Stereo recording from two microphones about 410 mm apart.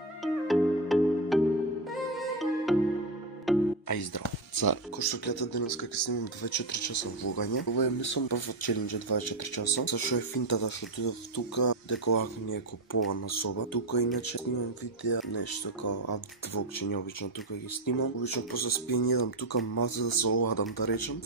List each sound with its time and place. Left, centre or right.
0.2 s music: centre
4.2 s speech: left
15.0 s speech: left
17.8 s speech: left
18.5 s speech: left
20.3 s speech: left
20.8 s speech: left